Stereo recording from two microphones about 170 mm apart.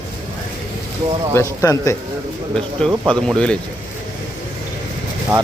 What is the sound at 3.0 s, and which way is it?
Speech, 5° left (ahead or behind).